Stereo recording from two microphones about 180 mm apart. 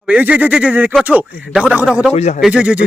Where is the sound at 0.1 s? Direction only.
10° right (ahead or behind).